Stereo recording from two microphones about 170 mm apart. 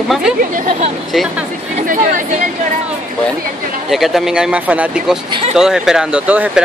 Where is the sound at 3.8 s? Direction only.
Centre (ahead or behind).